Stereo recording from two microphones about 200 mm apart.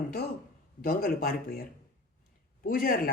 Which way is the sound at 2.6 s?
45° left (ahead or behind).